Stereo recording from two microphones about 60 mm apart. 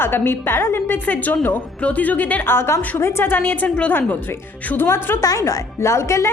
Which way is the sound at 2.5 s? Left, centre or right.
Left.